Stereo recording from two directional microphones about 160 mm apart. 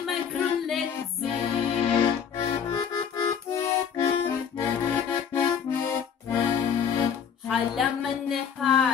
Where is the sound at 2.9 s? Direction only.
20° left (ahead or behind).